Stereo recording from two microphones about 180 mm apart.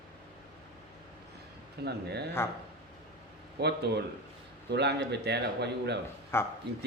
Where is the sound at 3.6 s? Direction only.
65° right (ahead or behind).